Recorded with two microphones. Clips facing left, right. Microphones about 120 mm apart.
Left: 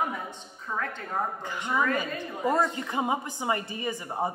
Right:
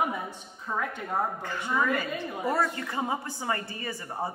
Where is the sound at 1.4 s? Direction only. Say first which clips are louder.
Even; 15° left (ahead or behind).